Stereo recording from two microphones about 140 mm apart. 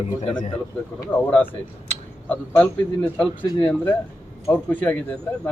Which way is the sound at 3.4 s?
30° left (ahead or behind).